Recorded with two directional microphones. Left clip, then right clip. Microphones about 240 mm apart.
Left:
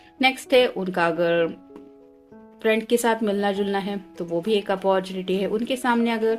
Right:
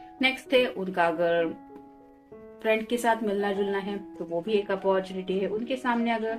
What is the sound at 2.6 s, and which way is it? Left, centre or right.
Speech, left.